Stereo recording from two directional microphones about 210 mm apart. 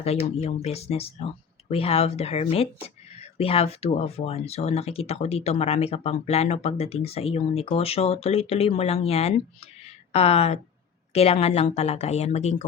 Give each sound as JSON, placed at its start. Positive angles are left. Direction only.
{"t": 0.0, "sound": "speech", "side_deg": 30}